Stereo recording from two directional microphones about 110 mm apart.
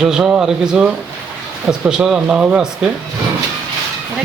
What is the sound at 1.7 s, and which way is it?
Speech, 5° right (ahead or behind).